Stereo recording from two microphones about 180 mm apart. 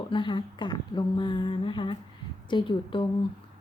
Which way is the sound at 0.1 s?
25° left (ahead or behind).